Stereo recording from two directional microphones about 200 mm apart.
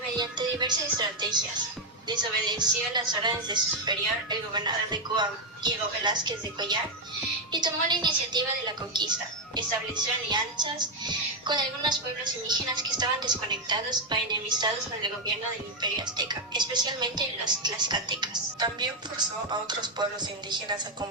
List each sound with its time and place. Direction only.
0.2 s speech: 20° right (ahead or behind)